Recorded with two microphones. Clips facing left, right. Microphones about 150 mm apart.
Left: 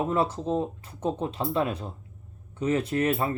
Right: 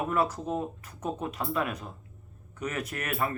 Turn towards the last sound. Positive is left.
turn(degrees=25)  # may be behind; listen again after turning